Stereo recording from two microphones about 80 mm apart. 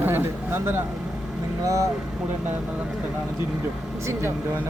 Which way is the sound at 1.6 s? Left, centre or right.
Right.